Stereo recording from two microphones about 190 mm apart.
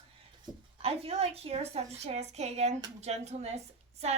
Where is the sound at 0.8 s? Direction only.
30° right (ahead or behind).